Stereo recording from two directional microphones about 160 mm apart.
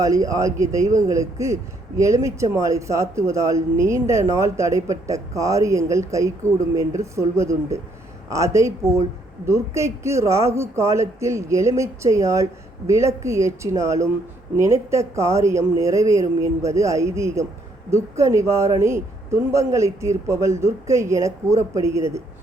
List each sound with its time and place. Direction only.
0.0 s speech: 20° right (ahead or behind)